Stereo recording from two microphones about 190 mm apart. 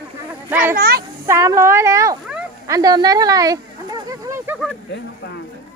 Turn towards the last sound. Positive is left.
turn(degrees=-15)  # may be behind; listen again after turning